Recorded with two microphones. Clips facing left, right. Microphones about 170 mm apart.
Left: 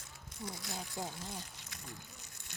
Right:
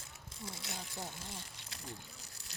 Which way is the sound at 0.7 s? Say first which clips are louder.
Left 4 dB; 20° left (ahead or behind).